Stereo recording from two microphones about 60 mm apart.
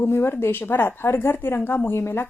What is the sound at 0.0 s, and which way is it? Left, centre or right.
A woman's voice, left.